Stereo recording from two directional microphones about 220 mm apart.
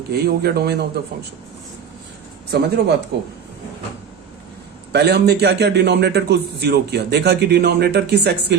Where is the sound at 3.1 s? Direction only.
50° right (ahead or behind).